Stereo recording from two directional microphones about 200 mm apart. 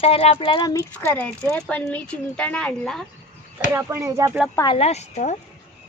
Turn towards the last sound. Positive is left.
turn(degrees=35)  # may be behind; listen again after turning